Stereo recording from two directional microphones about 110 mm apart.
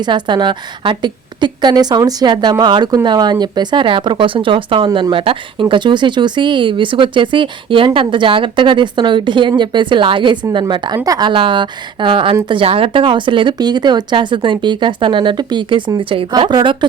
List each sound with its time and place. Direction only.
0.0 s a woman's voice: 45° right (ahead or behind)